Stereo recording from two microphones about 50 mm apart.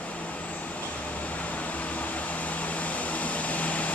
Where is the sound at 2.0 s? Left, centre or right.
Left.